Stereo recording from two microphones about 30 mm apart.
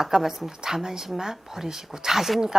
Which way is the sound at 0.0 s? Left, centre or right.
Centre.